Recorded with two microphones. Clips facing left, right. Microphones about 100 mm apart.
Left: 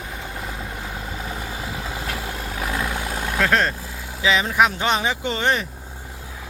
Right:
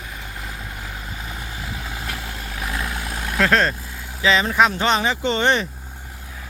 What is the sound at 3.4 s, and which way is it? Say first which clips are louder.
Speech: right 2 dB; 10° left (ahead or behind).